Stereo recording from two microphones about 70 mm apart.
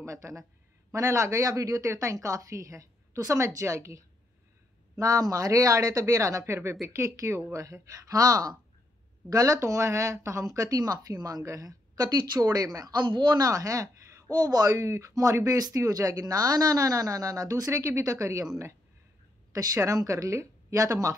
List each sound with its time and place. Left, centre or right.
0.0 s speech: right
10.8 s a woman's voice: right
11.4 s speech: right
13.5 s speech: right
14.3 s a woman's voice: right
14.8 s speech: right
19.5 s speech: right